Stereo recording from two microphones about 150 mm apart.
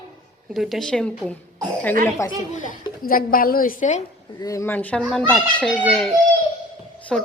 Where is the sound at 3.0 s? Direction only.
75° left (ahead or behind); by 4.0 s 55° left (ahead or behind).